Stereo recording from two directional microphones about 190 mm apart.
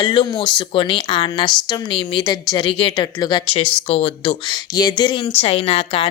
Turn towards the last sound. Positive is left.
turn(degrees=30)  # may be behind; listen again after turning